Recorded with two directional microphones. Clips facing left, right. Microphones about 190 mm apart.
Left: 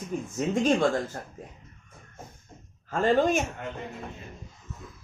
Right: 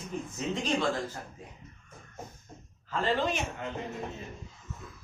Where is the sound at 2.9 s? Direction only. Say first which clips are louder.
Left 6 dB; 50° left (ahead or behind).